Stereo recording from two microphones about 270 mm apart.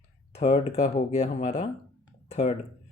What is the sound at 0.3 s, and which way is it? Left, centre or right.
Speech, left.